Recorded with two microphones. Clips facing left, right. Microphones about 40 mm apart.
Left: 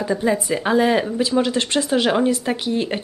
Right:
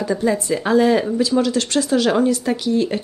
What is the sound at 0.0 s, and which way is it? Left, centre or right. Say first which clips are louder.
Speech: right 1 dB; centre.